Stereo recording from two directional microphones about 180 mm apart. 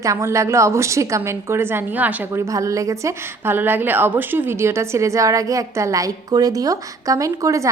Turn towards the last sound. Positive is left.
turn(degrees=-20)  # may be behind; listen again after turning